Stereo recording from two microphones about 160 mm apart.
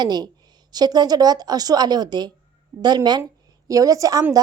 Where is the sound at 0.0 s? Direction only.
25° right (ahead or behind).